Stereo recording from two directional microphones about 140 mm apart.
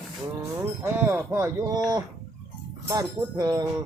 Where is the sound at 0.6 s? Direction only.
20° right (ahead or behind).